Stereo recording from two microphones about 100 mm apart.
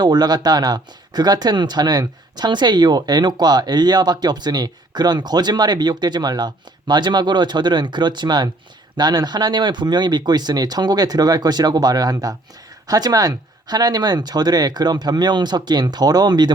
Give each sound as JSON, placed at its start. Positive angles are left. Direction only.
{"t": 0.0, "sound": "speech", "side_deg": -45}